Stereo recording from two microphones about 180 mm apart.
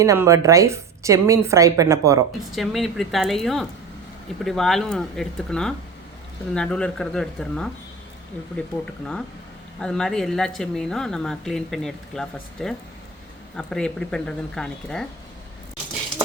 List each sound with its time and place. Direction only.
0.0 s a woman's voice: 15° right (ahead or behind)
2.6 s a woman's voice: centre (ahead or behind)
9.8 s a woman's voice: 5° left (ahead or behind)